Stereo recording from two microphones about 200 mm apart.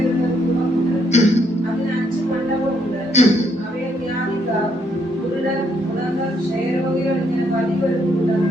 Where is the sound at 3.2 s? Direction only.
35° left (ahead or behind).